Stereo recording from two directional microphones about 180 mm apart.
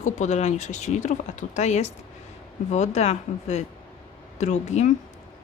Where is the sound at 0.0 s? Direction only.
40° left (ahead or behind).